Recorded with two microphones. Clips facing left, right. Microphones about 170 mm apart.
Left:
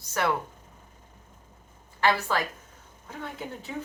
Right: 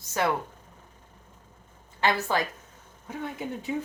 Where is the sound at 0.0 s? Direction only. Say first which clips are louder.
Right 1 dB; 20° right (ahead or behind).